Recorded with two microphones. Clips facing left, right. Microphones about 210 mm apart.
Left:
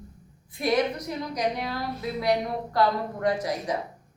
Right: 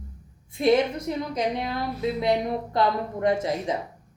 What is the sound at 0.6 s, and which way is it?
A woman's voice, 25° right (ahead or behind).